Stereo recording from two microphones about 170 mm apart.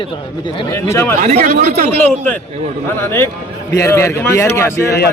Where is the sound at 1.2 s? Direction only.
40° right (ahead or behind).